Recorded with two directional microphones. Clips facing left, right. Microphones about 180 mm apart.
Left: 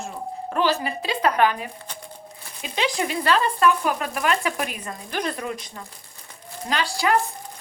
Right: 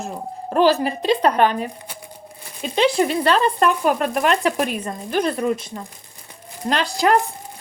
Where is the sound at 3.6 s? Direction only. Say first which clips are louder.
Right 3 dB; 45° right (ahead or behind).